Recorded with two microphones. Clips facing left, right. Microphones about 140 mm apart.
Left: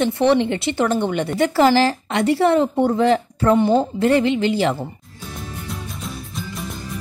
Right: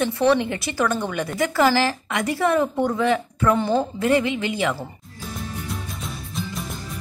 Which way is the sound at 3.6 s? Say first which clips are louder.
Left 5 dB; 20° left (ahead or behind).